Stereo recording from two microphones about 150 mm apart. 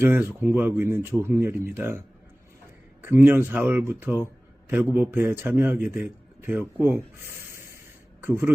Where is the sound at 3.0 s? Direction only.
15° right (ahead or behind).